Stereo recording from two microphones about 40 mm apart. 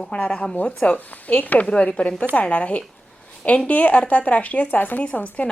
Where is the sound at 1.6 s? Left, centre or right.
Left.